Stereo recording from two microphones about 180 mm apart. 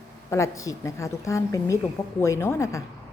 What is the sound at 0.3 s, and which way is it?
A woman's voice, 15° left (ahead or behind).